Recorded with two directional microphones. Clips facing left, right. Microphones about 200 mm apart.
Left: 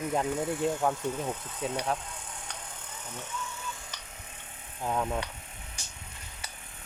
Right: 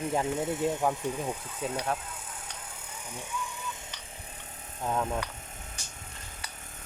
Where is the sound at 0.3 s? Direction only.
20° right (ahead or behind).